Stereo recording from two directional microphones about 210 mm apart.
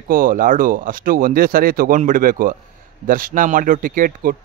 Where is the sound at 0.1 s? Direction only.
40° right (ahead or behind).